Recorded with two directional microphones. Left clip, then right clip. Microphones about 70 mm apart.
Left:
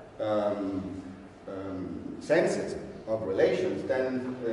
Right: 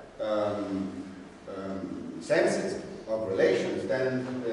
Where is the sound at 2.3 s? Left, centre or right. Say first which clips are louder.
Even; centre.